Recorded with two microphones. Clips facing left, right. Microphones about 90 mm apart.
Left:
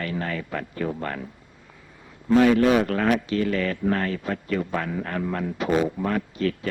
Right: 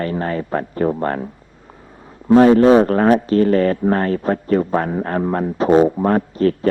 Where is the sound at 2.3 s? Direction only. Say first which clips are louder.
Right 8 dB; 35° right (ahead or behind).